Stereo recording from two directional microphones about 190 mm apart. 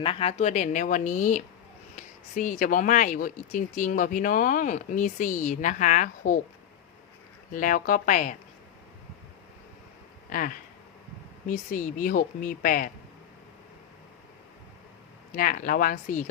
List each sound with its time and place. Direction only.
0.0 s speech: 30° left (ahead or behind)
7.5 s speech: 45° left (ahead or behind)
10.2 s speech: 45° left (ahead or behind)
15.4 s speech: 45° left (ahead or behind)